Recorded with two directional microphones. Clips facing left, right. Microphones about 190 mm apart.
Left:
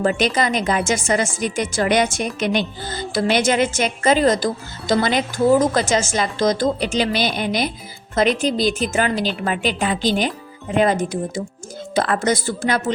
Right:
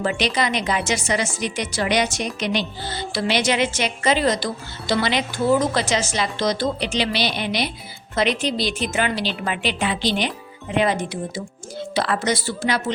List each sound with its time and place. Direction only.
0.0 s a woman's voice: 45° left (ahead or behind)